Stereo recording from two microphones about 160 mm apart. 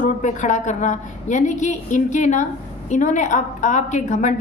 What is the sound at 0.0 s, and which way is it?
A woman's voice, 50° left (ahead or behind).